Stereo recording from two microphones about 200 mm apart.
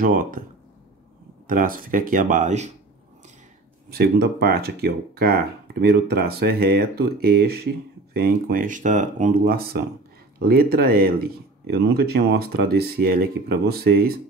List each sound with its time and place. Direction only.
0.0 s speech: 45° right (ahead or behind)
1.5 s speech: 45° right (ahead or behind)
3.9 s speech: 50° right (ahead or behind)